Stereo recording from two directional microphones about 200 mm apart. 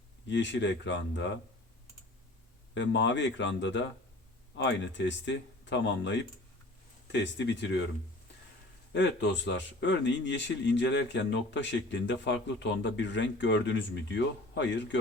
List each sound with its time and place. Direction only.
0.3 s speech: 65° left (ahead or behind)
2.7 s speech: 65° left (ahead or behind)
8.9 s speech: 65° left (ahead or behind)